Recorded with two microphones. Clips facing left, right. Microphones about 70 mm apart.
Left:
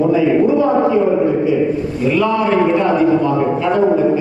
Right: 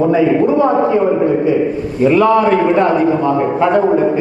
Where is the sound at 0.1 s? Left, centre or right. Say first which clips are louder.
Right 1 dB; right.